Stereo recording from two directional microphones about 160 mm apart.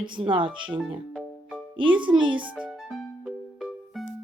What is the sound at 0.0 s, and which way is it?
Speech, 30° right (ahead or behind).